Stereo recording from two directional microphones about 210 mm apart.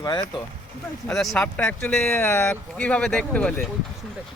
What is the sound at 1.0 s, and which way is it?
Speech, centre (ahead or behind).